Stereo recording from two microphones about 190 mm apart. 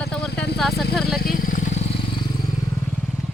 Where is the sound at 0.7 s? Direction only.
60° left (ahead or behind).